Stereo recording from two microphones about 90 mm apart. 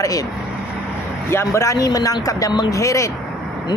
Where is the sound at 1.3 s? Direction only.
30° left (ahead or behind); by 2.7 s 45° left (ahead or behind).